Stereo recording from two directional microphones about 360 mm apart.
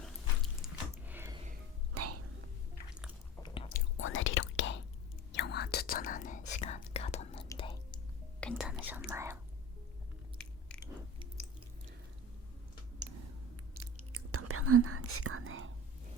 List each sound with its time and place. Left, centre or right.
0.0 s biting: centre
2.0 s whispering: right
3.4 s whispering: centre
13.7 s whispering: right